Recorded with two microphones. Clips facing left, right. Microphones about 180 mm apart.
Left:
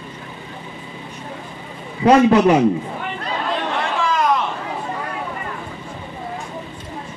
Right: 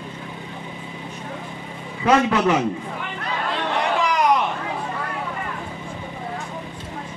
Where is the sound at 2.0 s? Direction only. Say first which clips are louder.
Left 6 dB; 30° left (ahead or behind).